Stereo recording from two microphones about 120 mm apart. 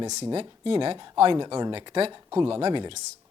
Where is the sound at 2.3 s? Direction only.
35° right (ahead or behind).